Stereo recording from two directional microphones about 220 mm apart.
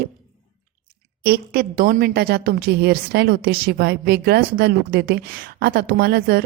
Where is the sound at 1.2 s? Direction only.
45° right (ahead or behind).